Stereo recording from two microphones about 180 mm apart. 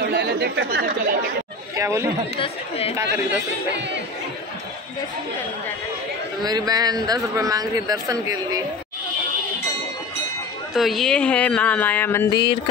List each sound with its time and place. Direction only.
0.1 s chatter: 70° right (ahead or behind)
0.7 s speech: 60° right (ahead or behind)
1.8 s speech: 15° right (ahead or behind)
2.3 s speech: 35° left (ahead or behind)
6.4 s a man's voice: 20° right (ahead or behind)
10.7 s speech: centre (ahead or behind)